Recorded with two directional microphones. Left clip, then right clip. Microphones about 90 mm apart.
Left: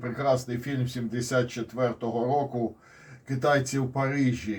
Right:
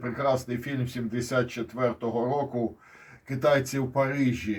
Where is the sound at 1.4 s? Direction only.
5° left (ahead or behind).